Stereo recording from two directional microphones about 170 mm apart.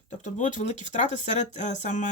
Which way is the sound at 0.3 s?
45° left (ahead or behind).